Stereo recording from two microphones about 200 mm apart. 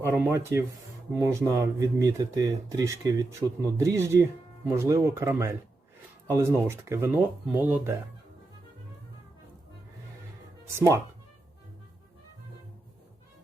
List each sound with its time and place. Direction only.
0.0 s speech: 10° right (ahead or behind)
10.8 s speech: 15° right (ahead or behind)